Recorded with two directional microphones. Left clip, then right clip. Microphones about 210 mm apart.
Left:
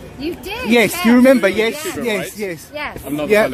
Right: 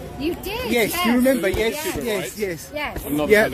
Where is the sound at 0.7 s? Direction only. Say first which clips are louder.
Left 6 dB; 45° left (ahead or behind).